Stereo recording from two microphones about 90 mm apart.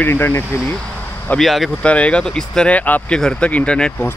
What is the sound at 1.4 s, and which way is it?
Speech, centre (ahead or behind).